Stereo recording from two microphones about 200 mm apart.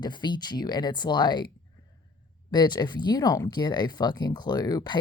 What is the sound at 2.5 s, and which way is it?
Speech, 20° left (ahead or behind).